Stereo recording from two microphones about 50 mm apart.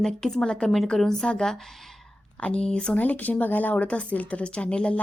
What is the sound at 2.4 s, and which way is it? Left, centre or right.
Speech, left.